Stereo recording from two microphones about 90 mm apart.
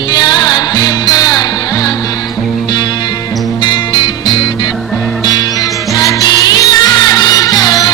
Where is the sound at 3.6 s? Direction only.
55° left (ahead or behind).